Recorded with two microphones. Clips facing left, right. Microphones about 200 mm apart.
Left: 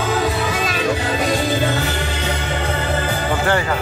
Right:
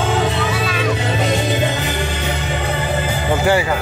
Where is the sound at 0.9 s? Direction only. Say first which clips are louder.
Right 1 dB; 20° right (ahead or behind).